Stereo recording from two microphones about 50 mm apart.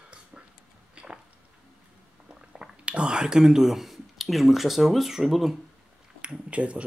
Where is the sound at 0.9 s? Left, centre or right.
Centre.